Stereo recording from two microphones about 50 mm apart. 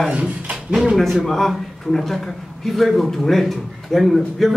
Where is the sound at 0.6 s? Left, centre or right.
Centre.